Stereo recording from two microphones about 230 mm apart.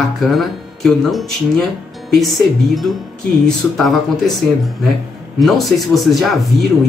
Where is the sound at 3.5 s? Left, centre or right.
Centre.